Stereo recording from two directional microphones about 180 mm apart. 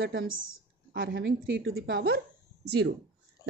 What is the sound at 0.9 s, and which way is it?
A woman's voice, 75° right (ahead or behind).